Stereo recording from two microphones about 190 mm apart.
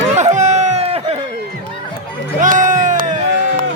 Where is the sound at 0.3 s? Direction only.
35° right (ahead or behind).